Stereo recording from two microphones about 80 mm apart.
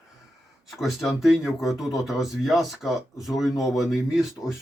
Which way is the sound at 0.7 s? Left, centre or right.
Centre.